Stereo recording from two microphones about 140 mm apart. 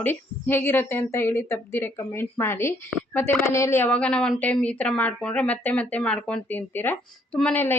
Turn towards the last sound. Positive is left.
turn(degrees=15)  # may be behind; listen again after turning